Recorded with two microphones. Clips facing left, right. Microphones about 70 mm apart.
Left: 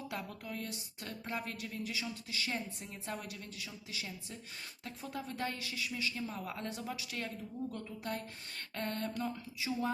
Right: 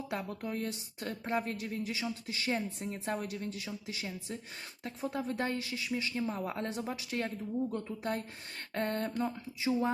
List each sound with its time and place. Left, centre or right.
0.1 s speech: right